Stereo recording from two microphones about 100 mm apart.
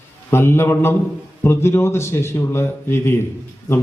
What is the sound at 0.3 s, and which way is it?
A man's voice, 25° left (ahead or behind).